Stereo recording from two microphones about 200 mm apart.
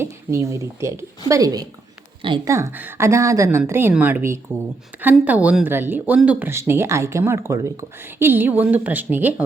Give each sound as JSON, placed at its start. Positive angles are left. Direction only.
{"t": 0.0, "sound": "speech", "side_deg": -15}